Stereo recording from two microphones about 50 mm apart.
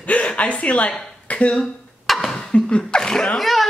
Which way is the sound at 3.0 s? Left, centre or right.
Centre.